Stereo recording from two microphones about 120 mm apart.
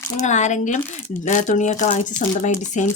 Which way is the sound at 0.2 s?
85° left.